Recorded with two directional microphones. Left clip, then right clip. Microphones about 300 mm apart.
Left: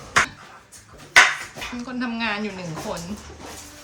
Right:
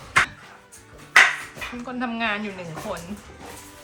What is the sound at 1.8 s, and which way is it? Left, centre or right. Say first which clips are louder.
A woman's voice: right 1 dB; centre.